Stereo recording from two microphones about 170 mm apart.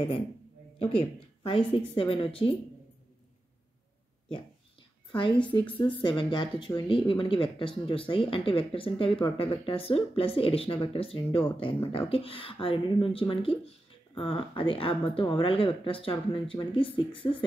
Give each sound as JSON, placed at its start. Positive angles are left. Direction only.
{"t": 0.7, "sound": "speech", "side_deg": 30}
{"t": 5.6, "sound": "speech", "side_deg": 10}
{"t": 5.9, "sound": "speech", "side_deg": 30}